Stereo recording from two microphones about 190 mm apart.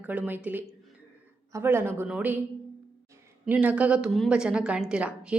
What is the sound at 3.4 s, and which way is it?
Speech, 5° right (ahead or behind).